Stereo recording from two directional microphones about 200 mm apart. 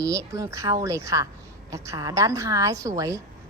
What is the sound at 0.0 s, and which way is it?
Speech, 15° right (ahead or behind).